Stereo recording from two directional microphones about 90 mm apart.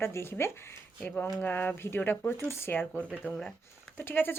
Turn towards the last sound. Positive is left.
turn(degrees=25)  # may be behind; listen again after turning